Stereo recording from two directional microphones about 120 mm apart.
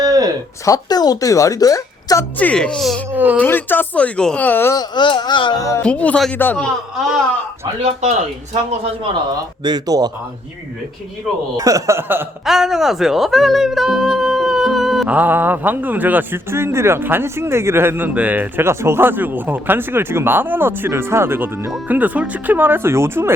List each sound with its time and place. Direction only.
0.0 s a sound: 30° right (ahead or behind)
0.6 s a woman's voice: 30° left (ahead or behind)
2.4 s speech: 10° left (ahead or behind)
3.1 s a sound: 15° right (ahead or behind)
3.3 s speech: 15° left (ahead or behind)
4.7 s music: 35° left (ahead or behind)
5.8 s speech: 10° left (ahead or behind)
7.8 s speech: 55° right (ahead or behind)
9.6 s speech: 35° right (ahead or behind)
11.5 s speech: 30° right (ahead or behind)
12.5 s speech: 5° right (ahead or behind)
15.1 s speech: 15° right (ahead or behind)